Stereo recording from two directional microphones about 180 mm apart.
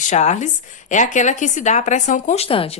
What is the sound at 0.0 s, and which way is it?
A woman's voice, 40° left (ahead or behind).